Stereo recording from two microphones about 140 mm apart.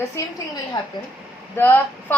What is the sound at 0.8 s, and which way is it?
Speech, 30° left (ahead or behind).